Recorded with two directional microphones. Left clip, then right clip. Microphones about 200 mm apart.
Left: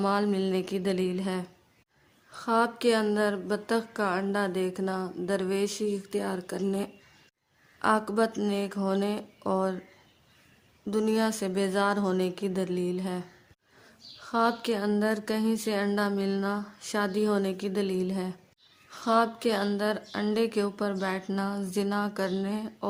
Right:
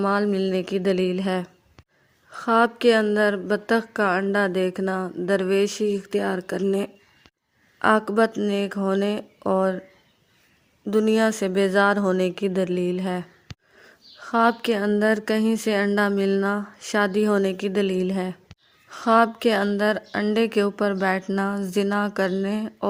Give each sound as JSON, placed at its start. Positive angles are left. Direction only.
{"t": 0.0, "sound": "a woman's voice", "side_deg": -20}
{"t": 10.8, "sound": "a woman's voice", "side_deg": -25}